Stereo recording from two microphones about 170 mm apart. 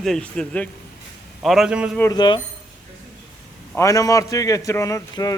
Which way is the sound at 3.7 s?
20° left (ahead or behind).